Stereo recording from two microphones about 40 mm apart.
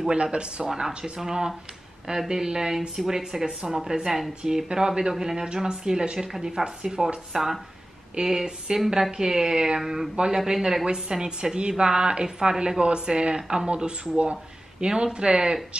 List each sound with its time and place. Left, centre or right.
0.0 s speech: right
0.7 s speech: centre
7.3 s speech: centre